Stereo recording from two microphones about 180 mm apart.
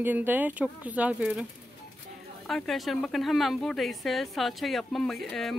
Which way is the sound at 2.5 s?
Centre (ahead or behind).